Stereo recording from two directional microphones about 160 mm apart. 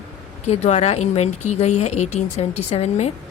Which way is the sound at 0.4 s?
45° left (ahead or behind).